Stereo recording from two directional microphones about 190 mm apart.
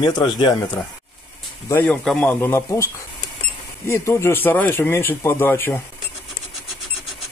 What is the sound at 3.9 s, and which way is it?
Speech, 15° left (ahead or behind).